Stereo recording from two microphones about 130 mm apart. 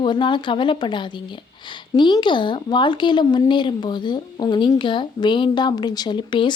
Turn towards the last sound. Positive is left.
turn(degrees=35)  # may be behind; listen again after turning